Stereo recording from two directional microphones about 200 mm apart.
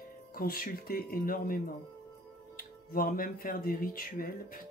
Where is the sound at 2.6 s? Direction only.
50° left (ahead or behind).